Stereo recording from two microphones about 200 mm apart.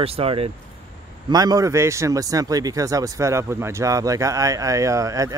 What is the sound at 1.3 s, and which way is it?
Speech, 20° right (ahead or behind).